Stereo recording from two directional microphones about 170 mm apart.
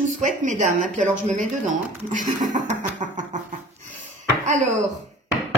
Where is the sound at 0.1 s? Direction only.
45° right (ahead or behind).